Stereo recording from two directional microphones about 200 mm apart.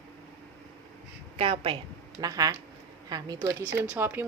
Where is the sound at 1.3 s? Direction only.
30° right (ahead or behind).